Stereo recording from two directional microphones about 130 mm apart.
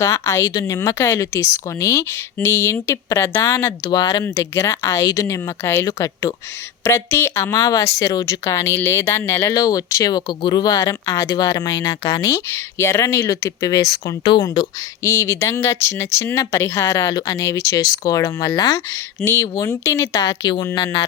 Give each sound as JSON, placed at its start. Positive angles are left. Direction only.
{"t": 0.0, "sound": "speech", "side_deg": 25}
{"t": 15.1, "sound": "speech", "side_deg": 20}